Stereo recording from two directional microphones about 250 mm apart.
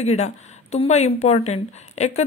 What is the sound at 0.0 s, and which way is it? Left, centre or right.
Speech, left.